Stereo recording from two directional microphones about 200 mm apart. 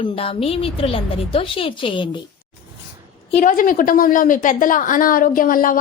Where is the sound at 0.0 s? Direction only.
30° left (ahead or behind).